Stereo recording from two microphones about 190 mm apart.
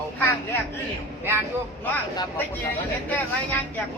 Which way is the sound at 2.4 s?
10° left (ahead or behind).